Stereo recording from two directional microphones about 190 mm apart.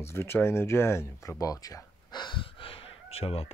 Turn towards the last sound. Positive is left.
turn(degrees=30)  # may be behind; listen again after turning